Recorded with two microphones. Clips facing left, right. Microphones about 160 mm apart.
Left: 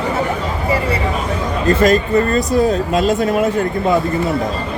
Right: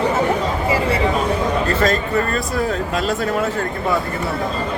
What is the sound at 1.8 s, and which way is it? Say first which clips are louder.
Speech: left 5 dB; 20° left (ahead or behind).